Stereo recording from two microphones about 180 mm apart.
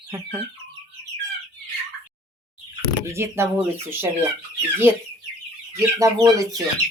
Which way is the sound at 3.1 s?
15° right (ahead or behind).